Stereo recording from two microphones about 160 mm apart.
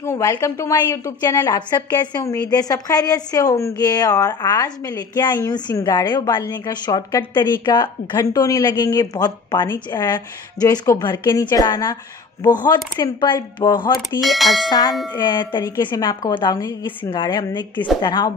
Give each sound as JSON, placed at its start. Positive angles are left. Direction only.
{"t": 0.0, "sound": "a woman's voice", "side_deg": 15}
{"t": 14.2, "sound": "speech", "side_deg": 0}
{"t": 14.7, "sound": "speech", "side_deg": 25}